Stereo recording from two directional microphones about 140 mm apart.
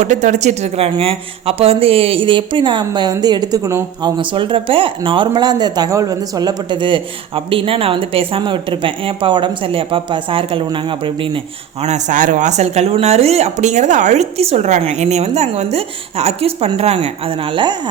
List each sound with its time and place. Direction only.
0.0 s speech: 60° right (ahead or behind); by 4.1 s 20° right (ahead or behind)
4.2 s speech: 35° right (ahead or behind)
11.8 s speech: 55° right (ahead or behind); by 17.7 s 35° right (ahead or behind)